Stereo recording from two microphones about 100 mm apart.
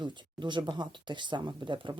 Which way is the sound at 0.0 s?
50° right (ahead or behind).